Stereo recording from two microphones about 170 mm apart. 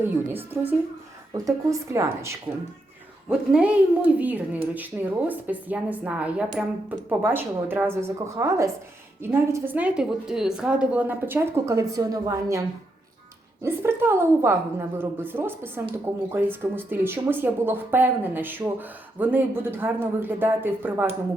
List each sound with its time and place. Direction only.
0.0 s speech: 15° right (ahead or behind)
3.2 s a woman's voice: 5° right (ahead or behind)